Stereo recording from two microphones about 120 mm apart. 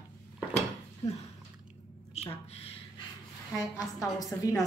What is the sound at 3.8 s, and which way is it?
Speech, 30° left (ahead or behind).